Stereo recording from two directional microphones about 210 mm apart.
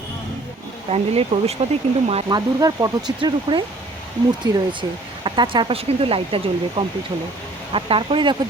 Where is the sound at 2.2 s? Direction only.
20° right (ahead or behind).